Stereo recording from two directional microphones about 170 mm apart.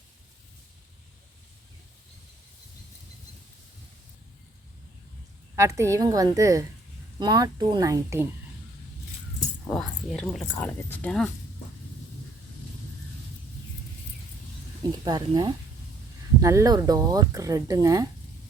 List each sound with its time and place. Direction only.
5.5 s speech: 15° right (ahead or behind)
9.6 s speech: 5° left (ahead or behind)
15.0 s speech: 25° right (ahead or behind)